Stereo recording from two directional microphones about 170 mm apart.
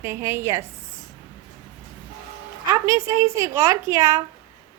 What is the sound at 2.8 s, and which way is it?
A woman's voice, 15° right (ahead or behind).